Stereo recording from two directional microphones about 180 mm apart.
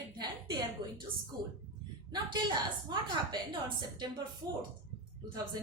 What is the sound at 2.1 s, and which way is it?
Speech, 25° right (ahead or behind).